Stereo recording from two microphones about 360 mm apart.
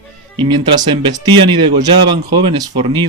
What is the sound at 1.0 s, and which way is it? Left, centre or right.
Speech, centre.